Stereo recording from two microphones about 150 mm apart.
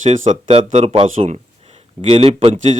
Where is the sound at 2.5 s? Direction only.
55° right (ahead or behind).